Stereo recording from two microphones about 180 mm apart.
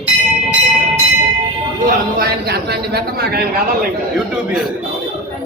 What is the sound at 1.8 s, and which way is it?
A man's voice, 60° right (ahead or behind).